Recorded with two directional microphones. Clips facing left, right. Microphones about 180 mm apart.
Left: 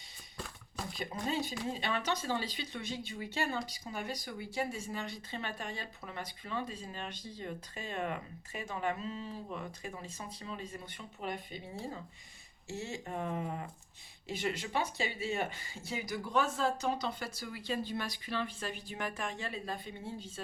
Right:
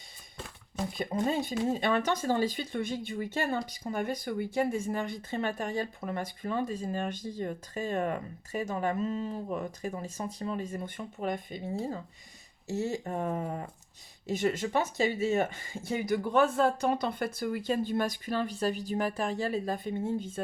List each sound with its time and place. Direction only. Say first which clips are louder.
1.3 s speech: right 4 dB; 50° right (ahead or behind)